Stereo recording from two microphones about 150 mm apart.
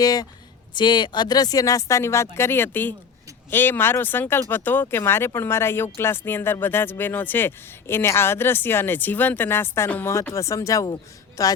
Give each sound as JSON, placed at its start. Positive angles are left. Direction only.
{"t": 0.0, "sound": "speech", "side_deg": 25}